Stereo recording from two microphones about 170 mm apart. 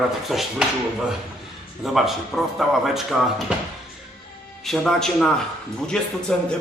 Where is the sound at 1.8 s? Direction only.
Centre (ahead or behind).